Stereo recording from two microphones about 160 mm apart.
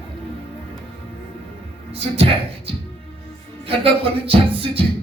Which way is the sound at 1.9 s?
40° right (ahead or behind).